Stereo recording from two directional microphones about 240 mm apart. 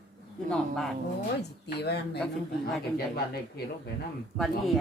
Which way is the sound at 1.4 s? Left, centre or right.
Left.